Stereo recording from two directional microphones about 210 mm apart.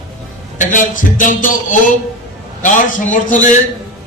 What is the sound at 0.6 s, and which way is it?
A man's voice, 40° left (ahead or behind).